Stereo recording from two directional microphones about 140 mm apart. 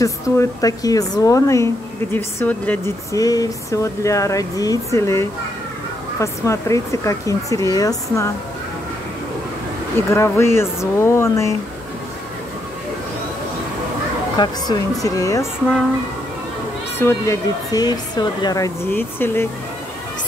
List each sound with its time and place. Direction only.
0.0 s speech: 25° left (ahead or behind)
2.1 s speech: 10° left (ahead or behind)
3.2 s speech: 25° left (ahead or behind)
10.1 s speech: 20° left (ahead or behind)
14.3 s speech: 30° left (ahead or behind)
17.0 s speech: 20° left (ahead or behind)
18.9 s speech: 15° left (ahead or behind)